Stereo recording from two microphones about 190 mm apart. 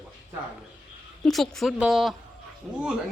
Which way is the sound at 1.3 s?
Centre (ahead or behind).